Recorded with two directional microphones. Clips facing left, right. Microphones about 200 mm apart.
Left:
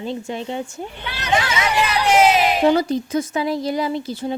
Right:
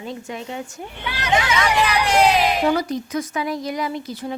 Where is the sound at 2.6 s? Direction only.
25° left (ahead or behind).